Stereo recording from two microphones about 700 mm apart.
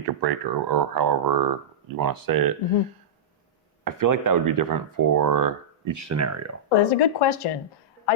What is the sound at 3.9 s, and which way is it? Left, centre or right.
Speech, right.